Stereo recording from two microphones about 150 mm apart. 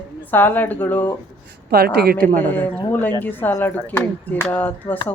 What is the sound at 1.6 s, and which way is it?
Speech, 90° right.